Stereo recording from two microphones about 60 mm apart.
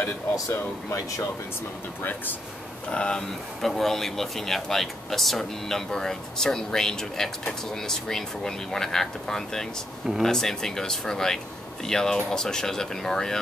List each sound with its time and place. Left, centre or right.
0.0 s speech: left
2.9 s speech: centre